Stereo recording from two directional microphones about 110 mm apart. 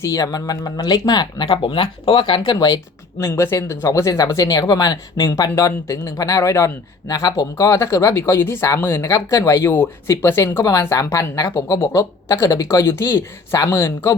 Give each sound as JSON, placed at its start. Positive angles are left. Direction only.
{"t": 0.0, "sound": "speech", "side_deg": 35}
{"t": 3.2, "sound": "speech", "side_deg": 25}
{"t": 7.5, "sound": "speech", "side_deg": 25}